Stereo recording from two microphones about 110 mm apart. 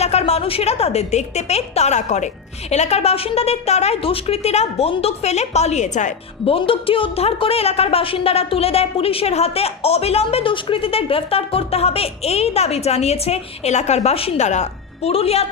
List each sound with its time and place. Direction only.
0.0 s a woman's voice: 75° left (ahead or behind); by 6.0 s 90° left
6.4 s speech: 55° left (ahead or behind)